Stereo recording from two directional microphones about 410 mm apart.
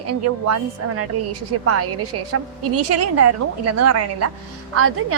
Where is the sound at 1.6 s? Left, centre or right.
Right.